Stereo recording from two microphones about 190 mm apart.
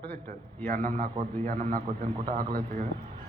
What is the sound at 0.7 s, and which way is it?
A man's voice, 45° right (ahead or behind).